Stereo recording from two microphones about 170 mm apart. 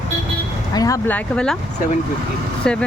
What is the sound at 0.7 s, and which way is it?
Speech, 20° left (ahead or behind).